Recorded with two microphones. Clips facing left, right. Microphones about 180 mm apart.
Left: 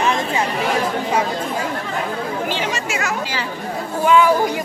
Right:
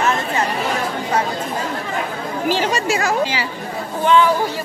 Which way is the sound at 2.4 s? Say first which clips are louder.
Right 5 dB; 35° right (ahead or behind).